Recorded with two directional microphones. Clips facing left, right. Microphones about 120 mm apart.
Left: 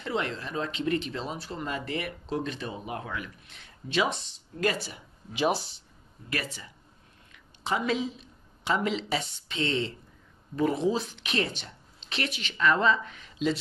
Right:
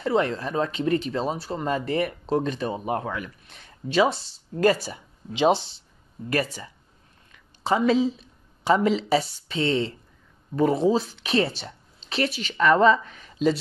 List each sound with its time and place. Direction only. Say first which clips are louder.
0.1 s speech: right 6 dB; 40° right (ahead or behind)
5.3 s speech: right 6 dB; 25° right (ahead or behind)
6.3 s speech: right 8 dB; 45° right (ahead or behind)